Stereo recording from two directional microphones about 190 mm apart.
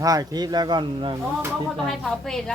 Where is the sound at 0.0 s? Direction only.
20° right (ahead or behind).